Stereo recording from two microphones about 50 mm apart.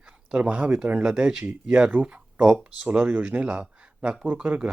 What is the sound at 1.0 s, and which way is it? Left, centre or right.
Speech, centre.